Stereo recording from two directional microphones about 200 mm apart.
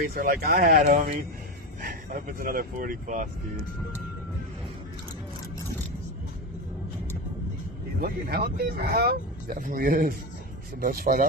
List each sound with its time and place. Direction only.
0.0 s speech: 50° right (ahead or behind)
1.8 s speech: 45° right (ahead or behind)
8.0 s speech: 50° right (ahead or behind)